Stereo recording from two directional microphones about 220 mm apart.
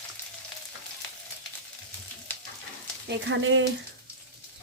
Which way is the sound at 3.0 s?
55° right (ahead or behind).